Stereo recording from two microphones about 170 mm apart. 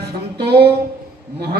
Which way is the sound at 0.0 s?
70° right (ahead or behind).